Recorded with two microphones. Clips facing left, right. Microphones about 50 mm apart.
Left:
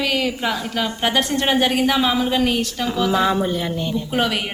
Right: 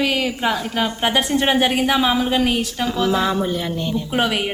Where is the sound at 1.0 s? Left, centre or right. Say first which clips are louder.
Right 1 dB; centre.